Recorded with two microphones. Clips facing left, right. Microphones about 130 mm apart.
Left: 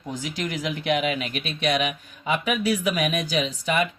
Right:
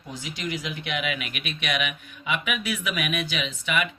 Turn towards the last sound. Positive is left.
turn(degrees=35)  # may be behind; listen again after turning